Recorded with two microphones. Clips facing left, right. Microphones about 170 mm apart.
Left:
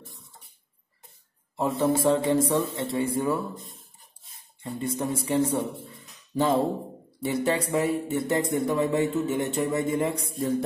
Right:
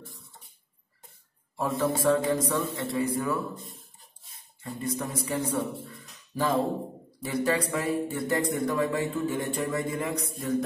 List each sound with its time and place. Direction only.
1.6 s speech: 25° left (ahead or behind)
4.7 s speech: 25° left (ahead or behind)
5.9 s a sound: 25° left (ahead or behind)
7.2 s speech: 25° left (ahead or behind)